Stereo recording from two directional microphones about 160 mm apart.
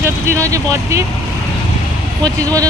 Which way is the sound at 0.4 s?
20° right (ahead or behind).